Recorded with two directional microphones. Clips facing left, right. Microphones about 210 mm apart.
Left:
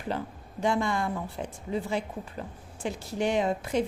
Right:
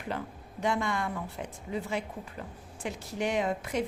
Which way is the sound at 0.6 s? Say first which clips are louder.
Left 3 dB; 30° left (ahead or behind).